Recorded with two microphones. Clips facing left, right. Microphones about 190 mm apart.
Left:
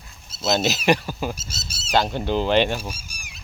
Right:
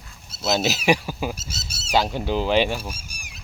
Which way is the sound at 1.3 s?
60° right (ahead or behind).